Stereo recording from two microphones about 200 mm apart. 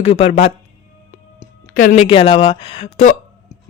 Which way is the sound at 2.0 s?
30° left (ahead or behind).